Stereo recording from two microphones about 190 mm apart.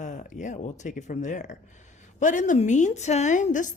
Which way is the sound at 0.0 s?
40° left (ahead or behind).